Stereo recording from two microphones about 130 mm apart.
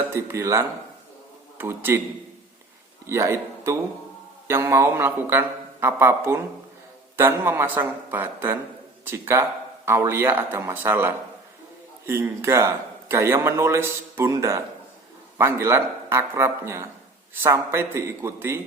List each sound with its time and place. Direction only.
0.1 s a man's voice: 20° right (ahead or behind)
3.1 s a man's voice: 20° right (ahead or behind)